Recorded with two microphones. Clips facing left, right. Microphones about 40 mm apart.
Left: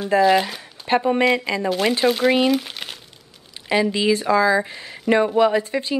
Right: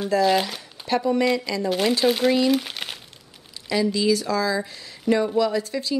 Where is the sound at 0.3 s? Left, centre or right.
Centre.